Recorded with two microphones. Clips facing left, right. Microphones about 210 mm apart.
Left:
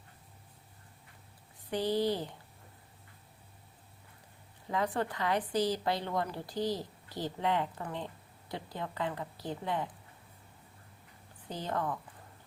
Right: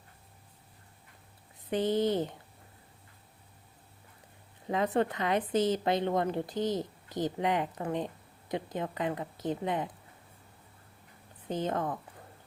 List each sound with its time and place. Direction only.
1.7 s a woman's voice: 20° right (ahead or behind)
4.7 s a woman's voice: 20° right (ahead or behind)
11.4 s a woman's voice: 20° right (ahead or behind)